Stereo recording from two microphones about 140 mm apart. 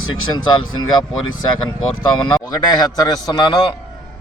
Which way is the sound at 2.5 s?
30° left (ahead or behind).